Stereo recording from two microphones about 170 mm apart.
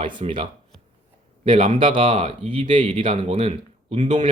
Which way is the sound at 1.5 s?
30° right (ahead or behind).